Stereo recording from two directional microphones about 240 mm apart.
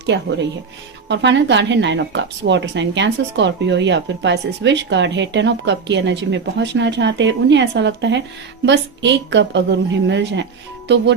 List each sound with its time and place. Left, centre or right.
0.0 s speech: right